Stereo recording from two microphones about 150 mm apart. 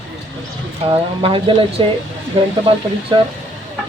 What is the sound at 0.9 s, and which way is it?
Speech, 35° right (ahead or behind).